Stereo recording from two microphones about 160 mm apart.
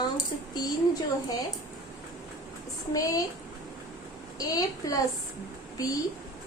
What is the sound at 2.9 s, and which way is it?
Child singing, 20° left (ahead or behind).